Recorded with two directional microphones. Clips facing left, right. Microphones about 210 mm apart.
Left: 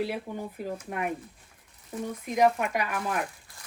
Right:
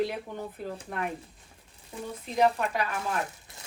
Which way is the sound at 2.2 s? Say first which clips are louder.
Left 1 dB; 10° left (ahead or behind).